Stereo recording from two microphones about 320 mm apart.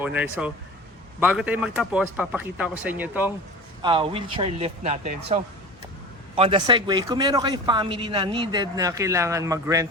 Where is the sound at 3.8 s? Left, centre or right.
Centre.